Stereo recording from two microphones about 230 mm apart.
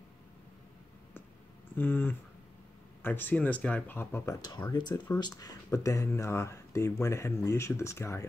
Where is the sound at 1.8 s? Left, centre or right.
Centre.